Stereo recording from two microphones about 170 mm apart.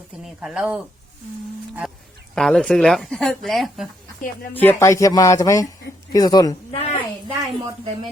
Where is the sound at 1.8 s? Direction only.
Centre (ahead or behind).